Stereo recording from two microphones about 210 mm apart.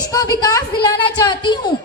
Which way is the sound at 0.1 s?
20° left (ahead or behind).